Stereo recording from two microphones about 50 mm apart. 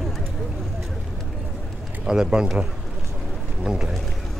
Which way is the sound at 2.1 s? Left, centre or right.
Centre.